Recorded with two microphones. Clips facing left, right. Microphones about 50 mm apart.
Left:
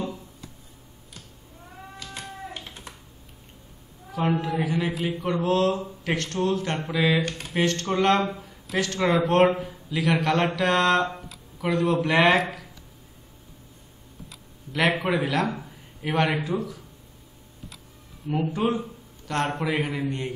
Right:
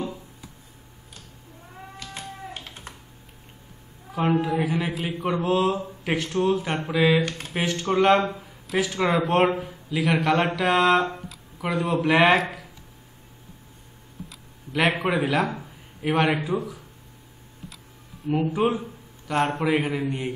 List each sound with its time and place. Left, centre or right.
2.1 s a sound: right
4.1 s speech: centre
7.2 s speech: right
7.5 s speech: centre
14.3 s typing: centre
15.0 s a man's voice: centre
18.3 s a man's voice: centre